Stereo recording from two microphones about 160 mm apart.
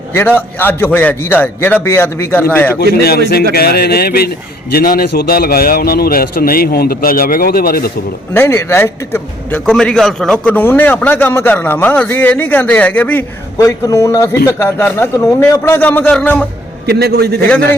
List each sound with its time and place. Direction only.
0.1 s a man's voice: 10° left (ahead or behind)
2.9 s a man's voice: 75° left (ahead or behind)
8.3 s a man's voice: 15° left (ahead or behind)
16.8 s a man's voice: 90° right